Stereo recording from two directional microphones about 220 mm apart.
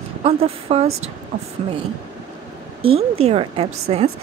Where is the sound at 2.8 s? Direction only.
25° right (ahead or behind).